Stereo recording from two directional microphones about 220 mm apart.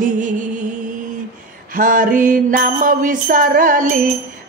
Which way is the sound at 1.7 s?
35° right (ahead or behind).